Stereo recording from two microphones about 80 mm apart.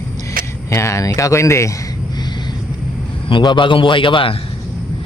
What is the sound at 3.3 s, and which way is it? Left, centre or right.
A man's voice, left.